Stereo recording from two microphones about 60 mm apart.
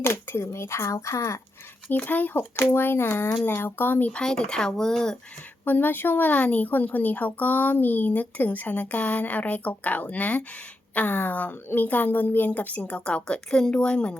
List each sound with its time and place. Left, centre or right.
0.0 s speech: left
1.9 s a woman's voice: left
2.6 s speech: left
4.1 s speech: centre
5.6 s a woman's voice: left